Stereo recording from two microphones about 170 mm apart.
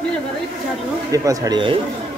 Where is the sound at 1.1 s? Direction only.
20° right (ahead or behind).